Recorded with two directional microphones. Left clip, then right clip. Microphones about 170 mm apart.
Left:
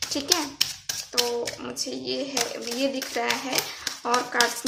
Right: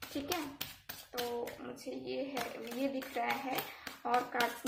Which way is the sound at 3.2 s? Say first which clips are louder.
Left 9 dB; 35° left (ahead or behind).